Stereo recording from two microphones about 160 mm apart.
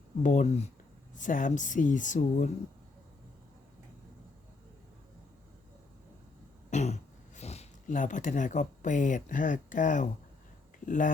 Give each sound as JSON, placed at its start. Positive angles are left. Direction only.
{"t": 0.2, "sound": "speech", "side_deg": 50}
{"t": 1.1, "sound": "speech", "side_deg": 55}
{"t": 6.7, "sound": "speech", "side_deg": 45}